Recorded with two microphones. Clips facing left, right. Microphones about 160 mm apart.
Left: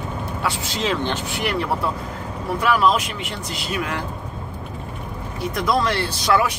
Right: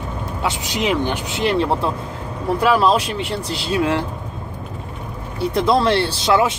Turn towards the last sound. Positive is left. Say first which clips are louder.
# right 3 dB
turn(degrees=-25)  # may be behind; listen again after turning